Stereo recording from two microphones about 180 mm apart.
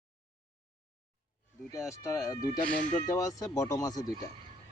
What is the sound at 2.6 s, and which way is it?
Speech, 5° left (ahead or behind).